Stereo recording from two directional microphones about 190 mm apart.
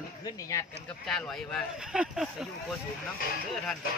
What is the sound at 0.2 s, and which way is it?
Speech, 15° left (ahead or behind).